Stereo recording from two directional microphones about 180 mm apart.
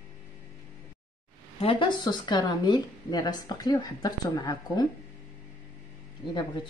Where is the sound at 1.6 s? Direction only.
30° left (ahead or behind).